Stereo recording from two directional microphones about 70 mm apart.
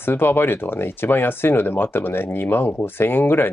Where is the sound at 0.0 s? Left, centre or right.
Left.